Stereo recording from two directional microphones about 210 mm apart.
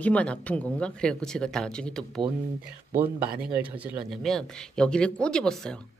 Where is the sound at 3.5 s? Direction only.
Centre (ahead or behind).